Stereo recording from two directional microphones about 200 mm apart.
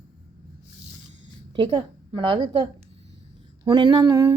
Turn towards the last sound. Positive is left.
turn(degrees=-15)  # may be behind; listen again after turning